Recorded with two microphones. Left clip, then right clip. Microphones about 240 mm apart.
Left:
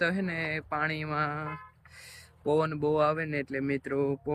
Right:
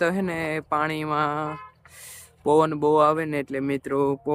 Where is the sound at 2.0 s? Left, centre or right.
Centre.